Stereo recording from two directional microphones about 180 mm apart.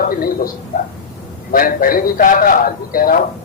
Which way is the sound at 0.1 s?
55° left (ahead or behind).